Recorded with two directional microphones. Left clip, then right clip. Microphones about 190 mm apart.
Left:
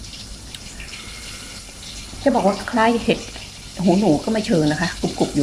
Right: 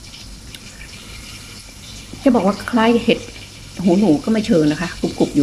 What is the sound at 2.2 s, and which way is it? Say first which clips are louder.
Speech: right 1 dB; 5° right (ahead or behind).